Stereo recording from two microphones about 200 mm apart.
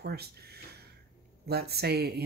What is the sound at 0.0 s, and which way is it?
Speech, 55° right (ahead or behind).